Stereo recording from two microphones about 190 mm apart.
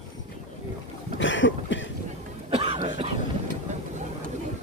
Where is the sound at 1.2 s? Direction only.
75° left (ahead or behind).